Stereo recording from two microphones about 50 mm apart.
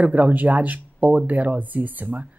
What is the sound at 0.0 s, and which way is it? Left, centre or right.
Speech, right.